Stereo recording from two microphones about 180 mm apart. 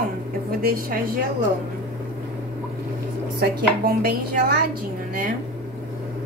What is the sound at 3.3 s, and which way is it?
A woman's voice, 55° right (ahead or behind).